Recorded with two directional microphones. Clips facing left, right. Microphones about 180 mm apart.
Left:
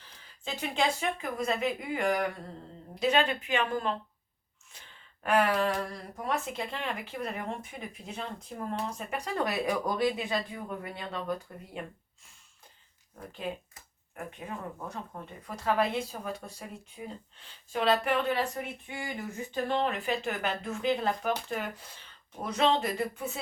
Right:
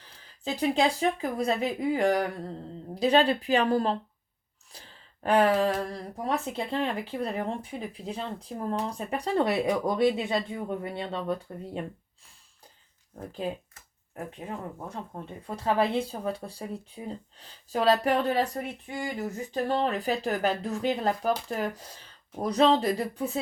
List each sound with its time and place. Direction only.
0.4 s speech: 35° right (ahead or behind)
13.4 s speech: 35° right (ahead or behind)
14.8 s speech: 30° right (ahead or behind)